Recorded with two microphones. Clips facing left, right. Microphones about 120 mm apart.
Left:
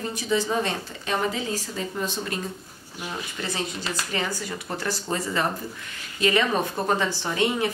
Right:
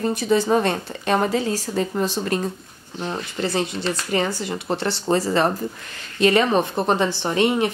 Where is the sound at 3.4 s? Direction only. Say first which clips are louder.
Right 8 dB; 30° right (ahead or behind).